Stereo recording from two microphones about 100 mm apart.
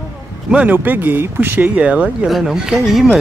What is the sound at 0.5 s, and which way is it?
Speech, 15° right (ahead or behind).